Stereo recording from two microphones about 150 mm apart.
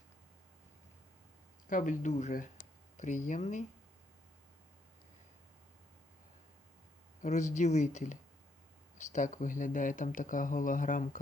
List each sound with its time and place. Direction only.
1.6 s speech: 60° left (ahead or behind)
7.2 s speech: 50° left (ahead or behind)